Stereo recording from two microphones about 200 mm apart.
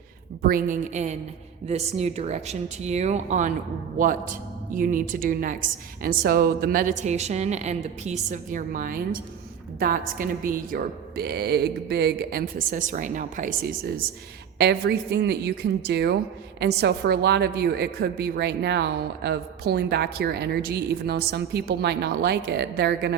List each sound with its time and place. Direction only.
0.4 s a woman's voice: 45° right (ahead or behind)
14.6 s a woman's voice: 55° right (ahead or behind)